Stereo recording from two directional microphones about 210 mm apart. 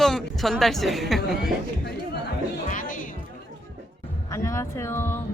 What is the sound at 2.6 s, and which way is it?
Music, 40° left (ahead or behind).